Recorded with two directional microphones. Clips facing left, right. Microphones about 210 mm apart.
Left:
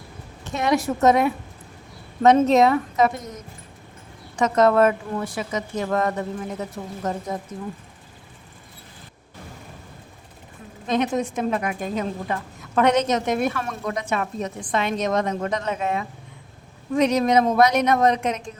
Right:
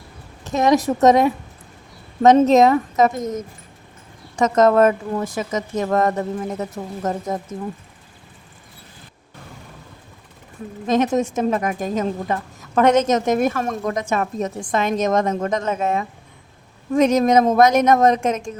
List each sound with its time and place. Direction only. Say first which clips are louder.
0.5 s a woman's voice: right 5 dB; 40° right (ahead or behind)
10.8 s a woman's voice: right 4 dB; 45° right (ahead or behind)